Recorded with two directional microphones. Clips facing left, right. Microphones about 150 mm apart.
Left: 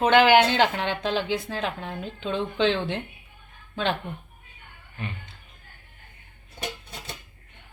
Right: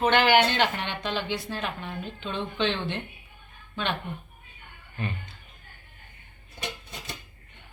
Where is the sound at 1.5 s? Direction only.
90° left.